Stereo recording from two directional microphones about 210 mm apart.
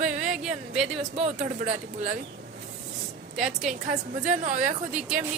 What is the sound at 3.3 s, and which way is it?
Speech, centre (ahead or behind).